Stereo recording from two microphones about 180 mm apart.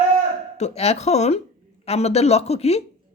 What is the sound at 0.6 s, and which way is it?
A woman's voice, 35° left (ahead or behind).